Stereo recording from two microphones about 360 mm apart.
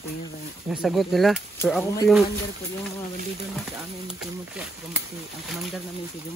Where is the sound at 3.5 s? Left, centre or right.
Centre.